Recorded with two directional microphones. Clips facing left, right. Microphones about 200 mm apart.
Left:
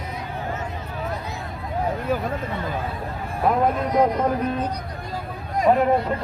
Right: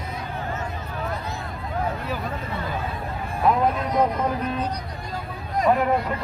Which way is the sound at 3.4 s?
50° left (ahead or behind).